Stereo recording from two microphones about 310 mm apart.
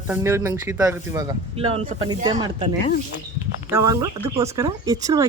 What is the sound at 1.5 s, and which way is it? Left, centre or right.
Speech, centre.